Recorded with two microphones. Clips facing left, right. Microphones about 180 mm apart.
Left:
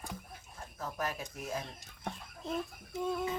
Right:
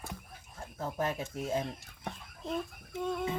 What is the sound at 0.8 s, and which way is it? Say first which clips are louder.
Speech: right 4 dB; 25° right (ahead or behind).